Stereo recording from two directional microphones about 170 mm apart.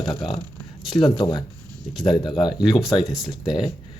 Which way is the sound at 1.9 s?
Centre (ahead or behind).